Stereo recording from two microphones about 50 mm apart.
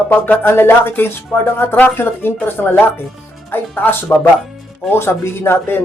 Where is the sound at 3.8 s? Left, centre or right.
Left.